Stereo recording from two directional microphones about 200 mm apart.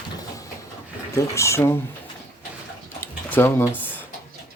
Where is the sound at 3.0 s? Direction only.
10° left (ahead or behind).